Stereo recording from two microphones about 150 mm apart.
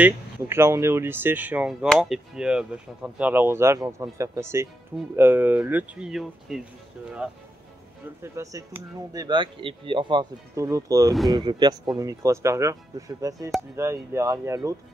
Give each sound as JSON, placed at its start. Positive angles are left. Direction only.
{"t": 0.0, "sound": "speech", "side_deg": -15}
{"t": 8.2, "sound": "speech", "side_deg": -20}
{"t": 10.5, "sound": "speech", "side_deg": -20}